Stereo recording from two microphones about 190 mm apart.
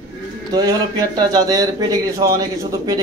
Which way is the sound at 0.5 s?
20° right (ahead or behind).